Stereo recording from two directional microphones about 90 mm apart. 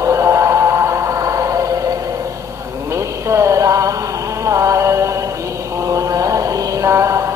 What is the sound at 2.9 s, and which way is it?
Music, 30° right (ahead or behind).